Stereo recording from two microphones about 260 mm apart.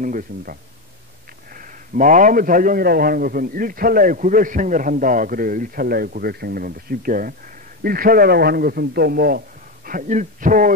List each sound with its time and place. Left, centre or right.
0.0 s a man's voice: right